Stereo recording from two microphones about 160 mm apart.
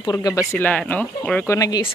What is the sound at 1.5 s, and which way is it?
Speech, 25° left (ahead or behind).